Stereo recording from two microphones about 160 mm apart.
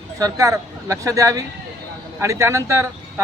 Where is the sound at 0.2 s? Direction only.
20° right (ahead or behind).